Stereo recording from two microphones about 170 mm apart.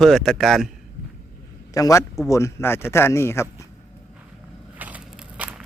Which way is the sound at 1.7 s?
20° left (ahead or behind).